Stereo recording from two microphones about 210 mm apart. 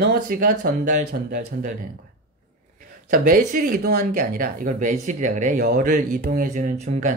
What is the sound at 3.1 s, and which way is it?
Speech, 40° right (ahead or behind).